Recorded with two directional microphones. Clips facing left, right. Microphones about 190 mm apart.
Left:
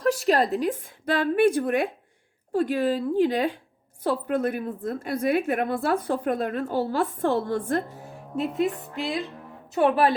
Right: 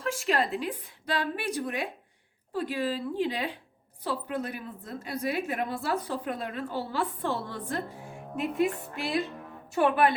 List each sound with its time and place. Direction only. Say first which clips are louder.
0.0 s a woman's voice: left 7 dB; 40° left (ahead or behind)
8.4 s speech: left 2 dB; 20° left (ahead or behind)
9.7 s speech: left 3 dB; 30° left (ahead or behind)